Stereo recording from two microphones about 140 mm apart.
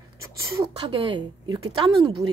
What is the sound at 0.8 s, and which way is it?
Speech, 35° right (ahead or behind).